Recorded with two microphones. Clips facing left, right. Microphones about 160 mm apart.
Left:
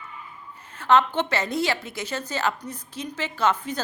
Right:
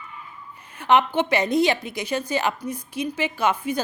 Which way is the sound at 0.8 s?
15° right (ahead or behind).